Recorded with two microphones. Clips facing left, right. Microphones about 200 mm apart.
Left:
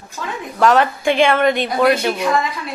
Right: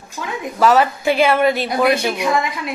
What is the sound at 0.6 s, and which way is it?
A woman's voice, 5° right (ahead or behind).